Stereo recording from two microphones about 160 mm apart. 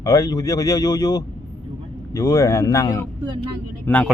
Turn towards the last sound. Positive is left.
turn(degrees=5)  # may be behind; listen again after turning